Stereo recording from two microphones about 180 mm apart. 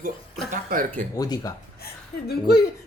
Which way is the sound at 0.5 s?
50° right (ahead or behind).